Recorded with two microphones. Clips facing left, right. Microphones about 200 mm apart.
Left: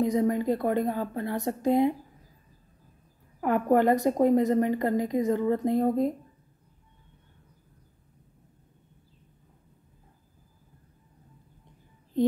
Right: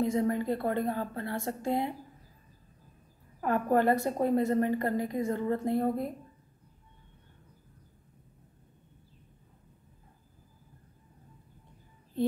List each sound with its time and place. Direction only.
0.0 s a woman's voice: 20° left (ahead or behind)
3.3 s a woman's voice: 15° left (ahead or behind)